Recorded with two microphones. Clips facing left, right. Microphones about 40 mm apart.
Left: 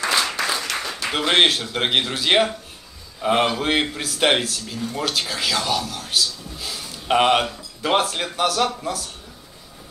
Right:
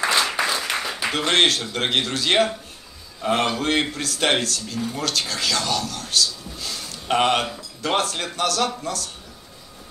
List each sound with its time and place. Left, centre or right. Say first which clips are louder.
0.1 s applause: right 1 dB; centre
1.1 s speech: left 2 dB; centre